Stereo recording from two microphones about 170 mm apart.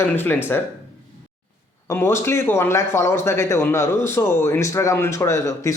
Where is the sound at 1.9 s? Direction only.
15° left (ahead or behind).